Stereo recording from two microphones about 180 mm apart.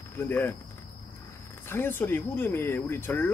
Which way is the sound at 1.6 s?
10° left (ahead or behind).